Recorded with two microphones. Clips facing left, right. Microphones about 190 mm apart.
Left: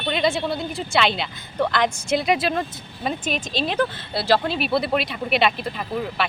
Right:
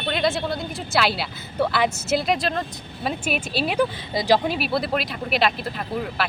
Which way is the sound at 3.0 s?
10° right (ahead or behind).